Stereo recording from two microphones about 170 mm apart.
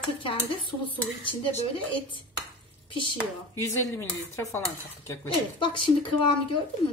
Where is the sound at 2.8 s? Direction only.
30° left (ahead or behind).